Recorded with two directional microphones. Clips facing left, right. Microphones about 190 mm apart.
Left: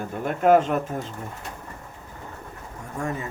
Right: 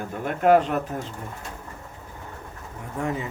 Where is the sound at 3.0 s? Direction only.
20° right (ahead or behind).